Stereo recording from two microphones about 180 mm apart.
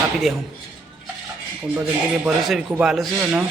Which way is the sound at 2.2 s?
Centre (ahead or behind).